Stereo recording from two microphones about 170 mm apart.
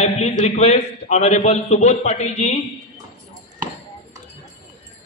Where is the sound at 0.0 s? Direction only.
40° left (ahead or behind).